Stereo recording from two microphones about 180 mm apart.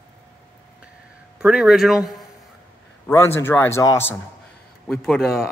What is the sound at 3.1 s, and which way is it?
A man's voice, 15° left (ahead or behind).